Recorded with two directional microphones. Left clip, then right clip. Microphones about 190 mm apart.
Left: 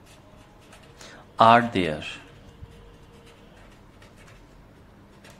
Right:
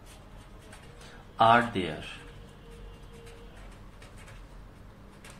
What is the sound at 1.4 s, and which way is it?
Speech, 45° left (ahead or behind).